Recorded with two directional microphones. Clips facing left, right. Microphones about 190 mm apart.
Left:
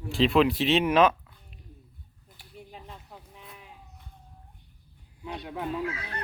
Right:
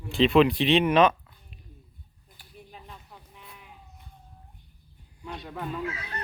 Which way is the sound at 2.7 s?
25° left (ahead or behind).